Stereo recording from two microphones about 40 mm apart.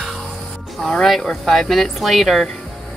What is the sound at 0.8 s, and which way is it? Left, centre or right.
Speech, centre.